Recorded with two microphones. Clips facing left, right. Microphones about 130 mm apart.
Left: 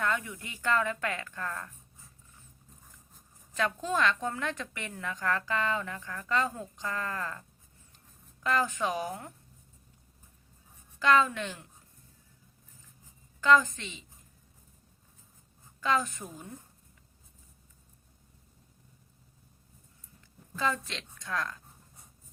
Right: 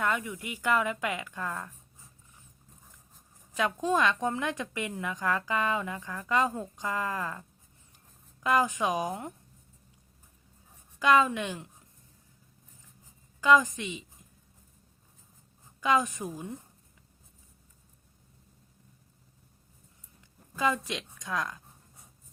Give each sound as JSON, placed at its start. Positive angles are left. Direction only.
{"t": 0.0, "sound": "a woman's voice", "side_deg": -10}
{"t": 3.5, "sound": "a woman's voice", "side_deg": -15}
{"t": 8.4, "sound": "a woman's voice", "side_deg": -15}
{"t": 11.0, "sound": "a woman's voice", "side_deg": -15}
{"t": 13.4, "sound": "a woman's voice", "side_deg": -15}
{"t": 15.8, "sound": "a woman's voice", "side_deg": -15}
{"t": 20.6, "sound": "a woman's voice", "side_deg": -15}